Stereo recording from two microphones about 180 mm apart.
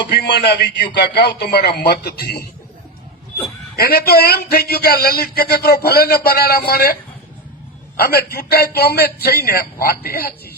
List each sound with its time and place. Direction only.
0.1 s a man's voice: 65° left (ahead or behind)
3.8 s a man's voice: 60° left (ahead or behind)
7.9 s a man's voice: 60° left (ahead or behind)